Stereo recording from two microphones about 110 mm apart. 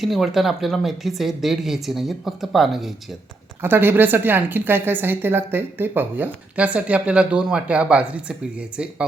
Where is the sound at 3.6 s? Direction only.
20° right (ahead or behind).